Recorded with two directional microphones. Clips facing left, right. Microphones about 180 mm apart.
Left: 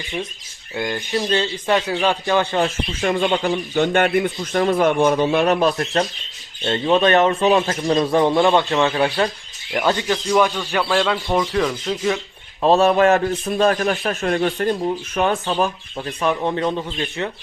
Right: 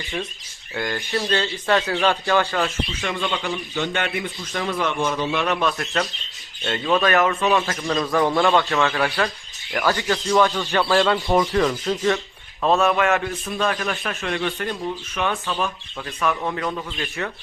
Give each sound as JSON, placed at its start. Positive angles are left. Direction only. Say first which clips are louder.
{"t": 0.8, "sound": "speech", "louder": "left 2 dB", "side_deg": 20}
{"t": 3.0, "sound": "a man's voice", "louder": "left 9 dB", "side_deg": 45}
{"t": 7.5, "sound": "speech", "louder": "left 4 dB", "side_deg": 20}
{"t": 10.7, "sound": "speech", "louder": "right 1 dB", "side_deg": 5}
{"t": 12.6, "sound": "speech", "louder": "left 5 dB", "side_deg": 30}